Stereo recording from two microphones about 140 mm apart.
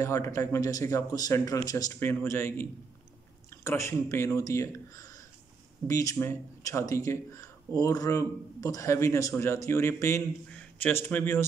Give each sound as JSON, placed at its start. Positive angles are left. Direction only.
{"t": 0.0, "sound": "a man's voice", "side_deg": 20}